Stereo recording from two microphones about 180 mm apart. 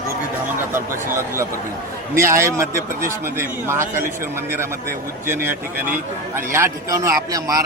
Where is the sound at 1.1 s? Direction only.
15° right (ahead or behind).